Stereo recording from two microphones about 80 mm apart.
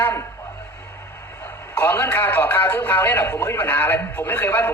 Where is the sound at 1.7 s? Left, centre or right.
Left.